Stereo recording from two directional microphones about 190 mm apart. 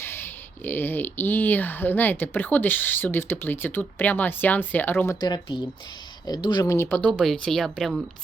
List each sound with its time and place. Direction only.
0.0 s speech: 10° left (ahead or behind)
5.2 s speech: 20° left (ahead or behind)
6.9 s speech: 5° left (ahead or behind)